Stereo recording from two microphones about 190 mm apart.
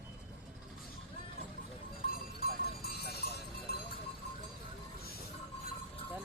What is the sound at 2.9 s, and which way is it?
Clip-clop, 55° left (ahead or behind).